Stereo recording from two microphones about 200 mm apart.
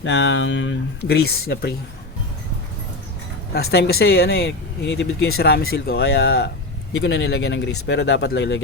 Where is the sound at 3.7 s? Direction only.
55° left (ahead or behind).